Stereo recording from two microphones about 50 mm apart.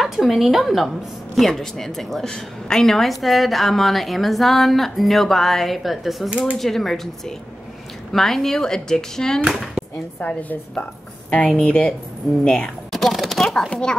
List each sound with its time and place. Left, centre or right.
0.0 s a woman's voice: centre
6.3 s speech: right
6.6 s a woman's voice: centre
10.2 s a woman's voice: left
11.4 s a woman's voice: centre
12.9 s a sound: centre
13.7 s speech: centre